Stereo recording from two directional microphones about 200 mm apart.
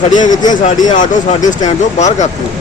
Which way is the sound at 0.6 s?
40° left (ahead or behind).